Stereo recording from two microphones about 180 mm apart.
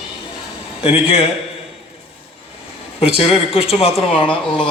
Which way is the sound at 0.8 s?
30° left (ahead or behind).